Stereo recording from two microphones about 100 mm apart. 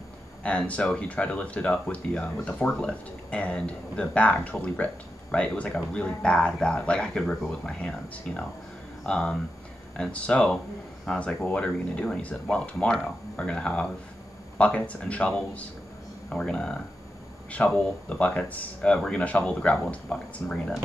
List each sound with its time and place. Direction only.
0.4 s speech: 10° left (ahead or behind)